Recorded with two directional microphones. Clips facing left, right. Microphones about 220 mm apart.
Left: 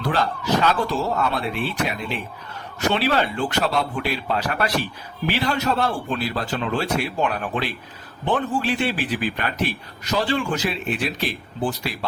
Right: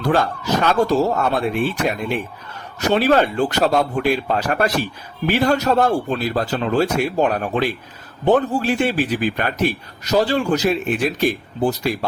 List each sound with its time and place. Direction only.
0.0 s a man's voice: 45° right (ahead or behind)